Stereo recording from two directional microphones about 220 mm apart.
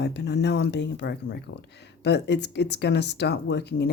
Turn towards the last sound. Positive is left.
turn(degrees=50)  # may be behind; listen again after turning